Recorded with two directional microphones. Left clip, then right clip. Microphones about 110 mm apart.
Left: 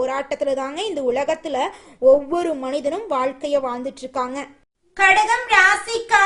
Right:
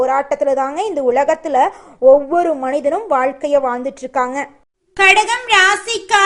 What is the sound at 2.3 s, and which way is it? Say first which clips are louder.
Speech: right 7 dB; 30° left (ahead or behind).